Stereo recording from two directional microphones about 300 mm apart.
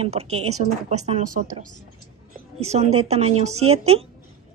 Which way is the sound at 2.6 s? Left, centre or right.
Right.